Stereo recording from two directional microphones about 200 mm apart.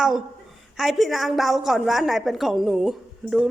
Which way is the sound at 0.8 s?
Centre (ahead or behind).